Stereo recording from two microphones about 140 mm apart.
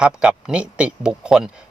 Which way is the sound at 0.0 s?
5° right (ahead or behind).